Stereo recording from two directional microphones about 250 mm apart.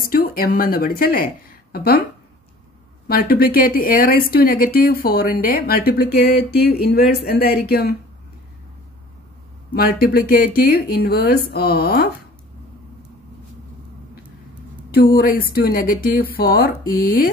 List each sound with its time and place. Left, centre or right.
0.1 s speech: left
3.1 s speech: left
9.8 s speech: left
14.9 s speech: left